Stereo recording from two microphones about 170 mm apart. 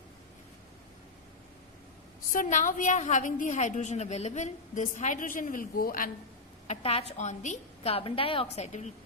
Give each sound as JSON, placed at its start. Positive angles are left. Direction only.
{"t": 2.3, "sound": "a woman's voice", "side_deg": 50}
{"t": 6.7, "sound": "a woman's voice", "side_deg": 40}